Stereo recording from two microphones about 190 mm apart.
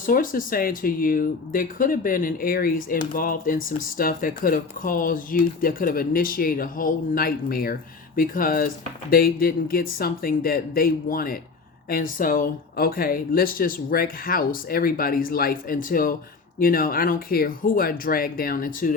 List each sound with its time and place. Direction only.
0.0 s speech: 45° left (ahead or behind)